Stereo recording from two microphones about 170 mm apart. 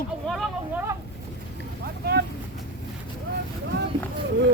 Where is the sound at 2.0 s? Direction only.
70° right (ahead or behind).